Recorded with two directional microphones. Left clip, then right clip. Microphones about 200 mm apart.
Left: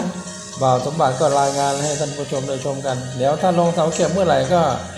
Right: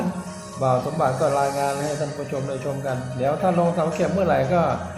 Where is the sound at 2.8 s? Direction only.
20° left (ahead or behind).